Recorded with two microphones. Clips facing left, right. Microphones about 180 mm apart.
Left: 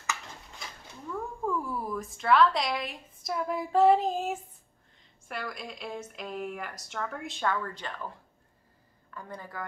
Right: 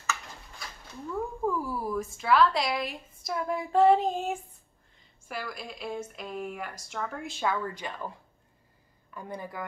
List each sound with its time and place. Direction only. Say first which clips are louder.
0.0 s a sound: right 1 dB; 15° left (ahead or behind)
1.4 s a woman's voice: right 1 dB; 5° right (ahead or behind)
9.1 s a woman's voice: right 3 dB; 15° right (ahead or behind)